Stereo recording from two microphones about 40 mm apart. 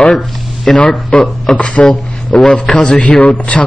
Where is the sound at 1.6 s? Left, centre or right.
Left.